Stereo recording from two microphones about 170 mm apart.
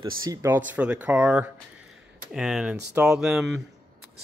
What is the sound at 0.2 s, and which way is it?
Speech, 20° right (ahead or behind).